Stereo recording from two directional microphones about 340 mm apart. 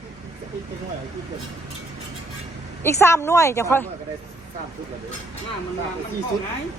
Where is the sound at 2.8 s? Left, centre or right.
Centre.